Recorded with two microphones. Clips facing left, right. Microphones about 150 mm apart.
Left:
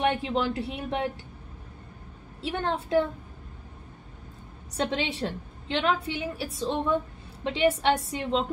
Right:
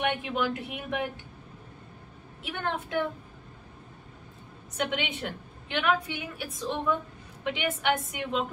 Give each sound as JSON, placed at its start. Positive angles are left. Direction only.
{"t": 0.0, "sound": "a woman's voice", "side_deg": 30}
{"t": 2.4, "sound": "a woman's voice", "side_deg": 30}
{"t": 4.7, "sound": "a woman's voice", "side_deg": 30}